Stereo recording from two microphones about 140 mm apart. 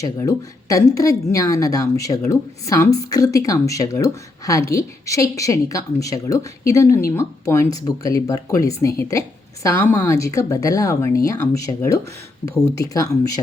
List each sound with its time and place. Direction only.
0.0 s a woman's voice: 25° left (ahead or behind)